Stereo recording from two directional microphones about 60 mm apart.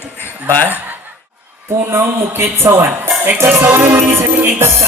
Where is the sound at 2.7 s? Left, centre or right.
Right.